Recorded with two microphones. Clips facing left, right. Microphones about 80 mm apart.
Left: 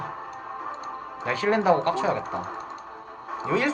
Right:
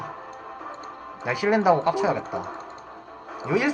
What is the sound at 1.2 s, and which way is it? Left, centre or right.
Music, centre.